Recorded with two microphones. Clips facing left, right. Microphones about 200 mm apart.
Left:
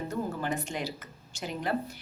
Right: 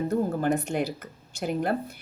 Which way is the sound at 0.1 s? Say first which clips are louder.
Right 7 dB; 60° right (ahead or behind).